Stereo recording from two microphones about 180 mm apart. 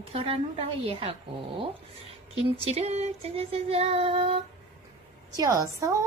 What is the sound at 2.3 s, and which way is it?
Child singing, 35° right (ahead or behind).